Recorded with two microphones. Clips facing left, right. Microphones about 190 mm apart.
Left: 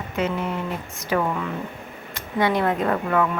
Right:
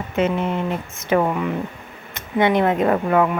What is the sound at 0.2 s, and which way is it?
A woman's voice, 25° right (ahead or behind).